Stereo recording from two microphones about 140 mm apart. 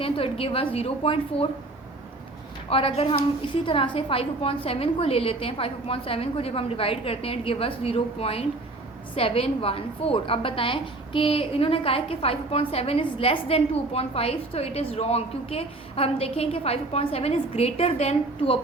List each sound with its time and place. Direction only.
0.0 s a woman's voice: 45° left (ahead or behind)
2.6 s a woman's voice: 40° left (ahead or behind)